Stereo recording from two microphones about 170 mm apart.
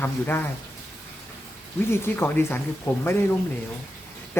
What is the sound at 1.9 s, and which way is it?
Speech, 15° left (ahead or behind).